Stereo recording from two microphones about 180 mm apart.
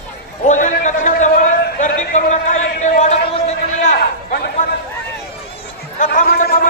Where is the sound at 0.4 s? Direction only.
40° left (ahead or behind).